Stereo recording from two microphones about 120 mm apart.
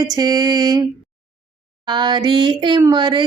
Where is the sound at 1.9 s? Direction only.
40° right (ahead or behind).